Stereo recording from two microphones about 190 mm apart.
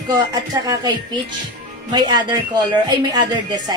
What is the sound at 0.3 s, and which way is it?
A woman's voice, 20° right (ahead or behind).